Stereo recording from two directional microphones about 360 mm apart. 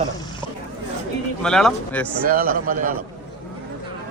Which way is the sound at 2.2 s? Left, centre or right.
Right.